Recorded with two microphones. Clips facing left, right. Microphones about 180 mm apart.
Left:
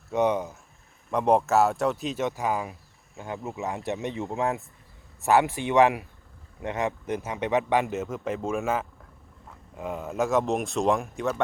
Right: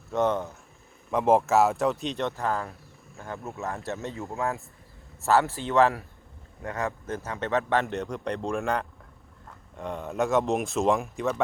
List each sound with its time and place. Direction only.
0.2 s speech: 15° left (ahead or behind)
1.1 s speech: centre (ahead or behind)
2.2 s speech: 15° left (ahead or behind)
7.9 s speech: centre (ahead or behind)